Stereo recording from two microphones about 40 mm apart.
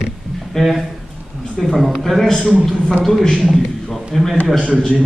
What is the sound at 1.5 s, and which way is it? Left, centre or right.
Speech, centre.